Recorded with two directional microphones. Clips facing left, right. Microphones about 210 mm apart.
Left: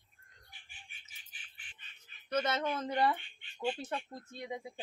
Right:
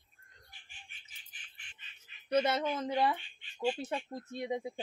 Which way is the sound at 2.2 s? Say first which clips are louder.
Right 3 dB; 10° right (ahead or behind).